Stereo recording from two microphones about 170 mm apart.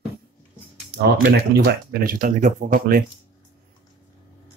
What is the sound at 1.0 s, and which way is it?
Speech, 70° right (ahead or behind).